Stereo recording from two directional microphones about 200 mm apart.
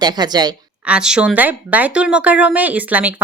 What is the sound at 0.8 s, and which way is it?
Speech, 5° right (ahead or behind).